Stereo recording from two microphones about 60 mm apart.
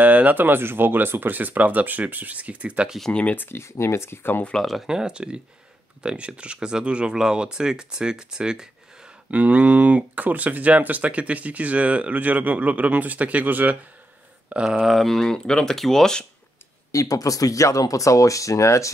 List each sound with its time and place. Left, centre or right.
0.0 s speech: right
3.1 s speech: left
3.3 s speech: left
4.6 s speech: centre
4.8 s speech: centre
9.3 s speech: right
14.5 s speech: centre
14.8 s speech: centre
16.9 s speech: left